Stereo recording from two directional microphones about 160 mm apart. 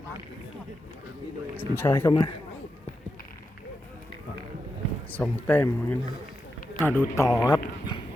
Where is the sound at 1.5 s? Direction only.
15° left (ahead or behind).